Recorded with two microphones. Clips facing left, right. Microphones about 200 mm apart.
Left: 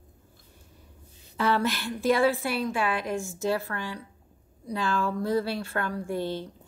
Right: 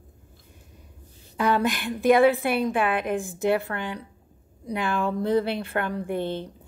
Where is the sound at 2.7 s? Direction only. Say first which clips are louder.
Right 4 dB; 55° right (ahead or behind).